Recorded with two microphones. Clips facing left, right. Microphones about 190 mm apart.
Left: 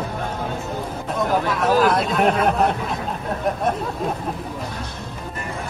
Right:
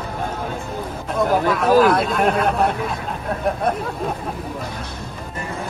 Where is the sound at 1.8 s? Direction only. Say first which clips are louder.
Right 2 dB; centre (ahead or behind).